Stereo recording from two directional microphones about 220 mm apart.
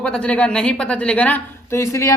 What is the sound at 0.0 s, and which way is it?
A woman's voice, 5° left (ahead or behind).